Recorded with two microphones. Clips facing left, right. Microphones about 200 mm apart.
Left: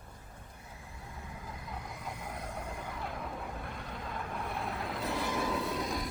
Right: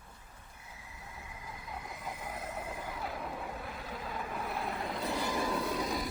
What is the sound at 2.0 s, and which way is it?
Vehicle, centre (ahead or behind).